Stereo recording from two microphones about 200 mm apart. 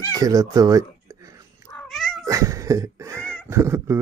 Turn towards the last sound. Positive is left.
turn(degrees=-15)  # may be behind; listen again after turning